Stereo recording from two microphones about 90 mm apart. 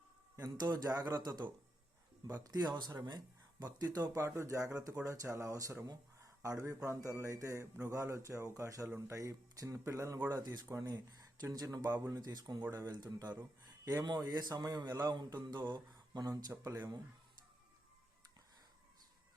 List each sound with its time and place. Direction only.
0.4 s a man's voice: 50° right (ahead or behind)
10.4 s speech: 50° right (ahead or behind)
10.7 s speech: 40° right (ahead or behind)